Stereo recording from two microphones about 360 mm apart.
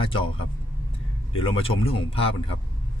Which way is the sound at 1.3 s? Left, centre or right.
Centre.